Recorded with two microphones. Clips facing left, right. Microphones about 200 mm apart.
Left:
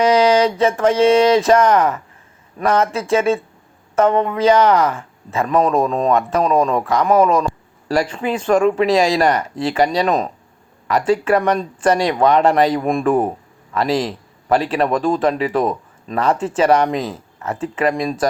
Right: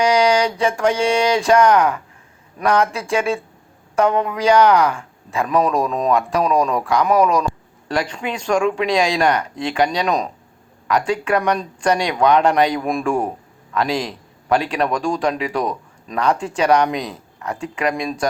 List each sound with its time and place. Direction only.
0.0 s a sound: centre (ahead or behind)
1.0 s speech: centre (ahead or behind)
6.4 s speech: 30° left (ahead or behind)
7.9 s speech: 5° left (ahead or behind)